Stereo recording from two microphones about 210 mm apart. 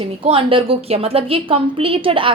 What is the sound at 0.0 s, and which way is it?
A woman's voice, 25° right (ahead or behind).